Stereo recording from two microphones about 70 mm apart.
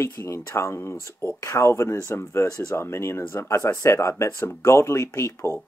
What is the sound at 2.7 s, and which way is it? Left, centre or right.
Speech, left.